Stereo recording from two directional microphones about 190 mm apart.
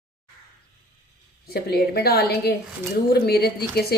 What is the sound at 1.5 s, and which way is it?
Speech, 55° left (ahead or behind).